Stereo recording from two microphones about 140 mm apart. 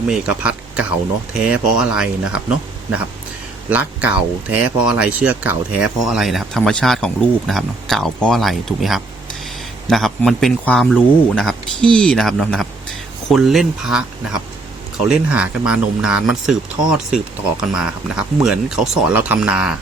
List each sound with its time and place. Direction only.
0.1 s speech: 10° right (ahead or behind)